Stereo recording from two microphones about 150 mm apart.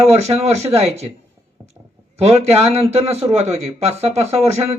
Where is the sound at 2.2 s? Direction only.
45° right (ahead or behind).